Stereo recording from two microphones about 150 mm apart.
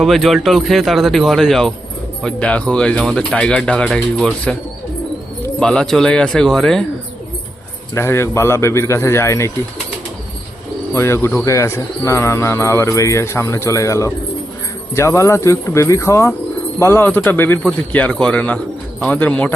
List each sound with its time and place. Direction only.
0.0 s speech: centre (ahead or behind)
5.5 s speech: 5° left (ahead or behind)
7.9 s speech: 15° left (ahead or behind)
10.9 s speech: 15° left (ahead or behind)